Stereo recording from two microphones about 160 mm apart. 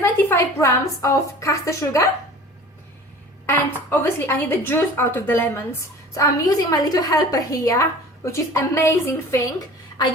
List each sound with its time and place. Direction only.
0.0 s a woman's voice: 15° left (ahead or behind)
3.4 s a woman's voice: 15° left (ahead or behind)